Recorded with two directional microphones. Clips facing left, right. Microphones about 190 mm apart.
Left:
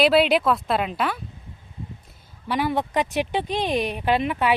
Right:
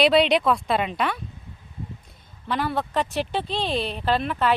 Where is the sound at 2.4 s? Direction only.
15° left (ahead or behind).